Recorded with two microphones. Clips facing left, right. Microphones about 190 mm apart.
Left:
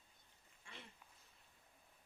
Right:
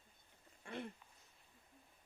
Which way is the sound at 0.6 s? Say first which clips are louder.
Right 13 dB; 55° right (ahead or behind).